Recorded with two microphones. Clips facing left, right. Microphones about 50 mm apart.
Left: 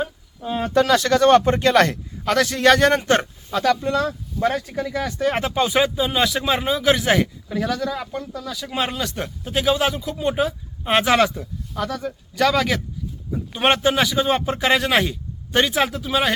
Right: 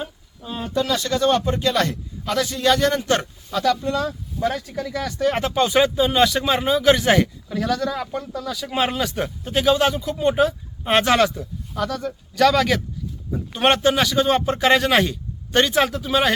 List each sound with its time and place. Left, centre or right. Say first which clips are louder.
0.0 s a sound: left 5 dB; left
0.7 s speech: left 5 dB; left
2.9 s speech: left 3 dB; left
4.9 s a man's voice: right 1 dB; centre